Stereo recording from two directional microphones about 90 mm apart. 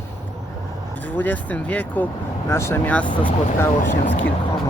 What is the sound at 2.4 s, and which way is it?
Speech, 30° left (ahead or behind).